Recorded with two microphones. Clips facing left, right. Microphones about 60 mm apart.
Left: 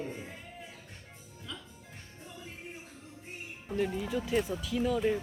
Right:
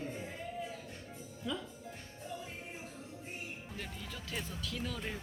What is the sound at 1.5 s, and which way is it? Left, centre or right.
Speech, centre.